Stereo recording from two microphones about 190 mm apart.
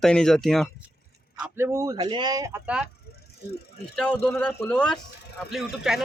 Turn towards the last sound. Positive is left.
turn(degrees=0)  # may be behind; listen again after turning